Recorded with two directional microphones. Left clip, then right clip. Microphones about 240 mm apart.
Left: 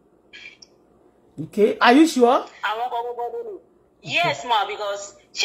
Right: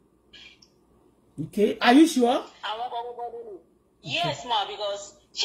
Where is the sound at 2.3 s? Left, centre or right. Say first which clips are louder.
Left 6 dB; left.